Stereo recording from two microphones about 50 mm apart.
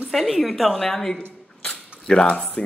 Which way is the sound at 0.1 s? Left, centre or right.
Centre.